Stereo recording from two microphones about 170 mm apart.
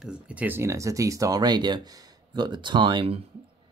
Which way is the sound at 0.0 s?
5° right (ahead or behind).